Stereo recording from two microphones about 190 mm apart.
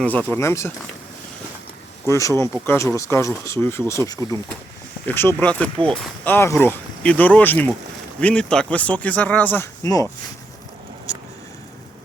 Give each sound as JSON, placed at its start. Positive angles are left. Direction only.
{"t": 0.0, "sound": "speech", "side_deg": 10}
{"t": 2.0, "sound": "speech", "side_deg": 15}